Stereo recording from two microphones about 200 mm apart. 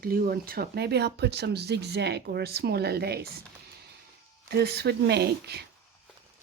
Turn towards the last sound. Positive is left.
turn(degrees=-55)  # may be behind; listen again after turning